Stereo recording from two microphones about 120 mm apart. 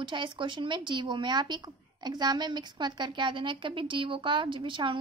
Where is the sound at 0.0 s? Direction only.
40° right (ahead or behind).